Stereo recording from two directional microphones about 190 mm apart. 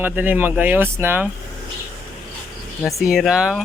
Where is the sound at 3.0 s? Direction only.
Centre (ahead or behind).